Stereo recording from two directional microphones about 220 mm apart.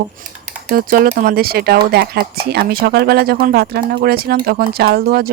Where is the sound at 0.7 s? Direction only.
40° right (ahead or behind).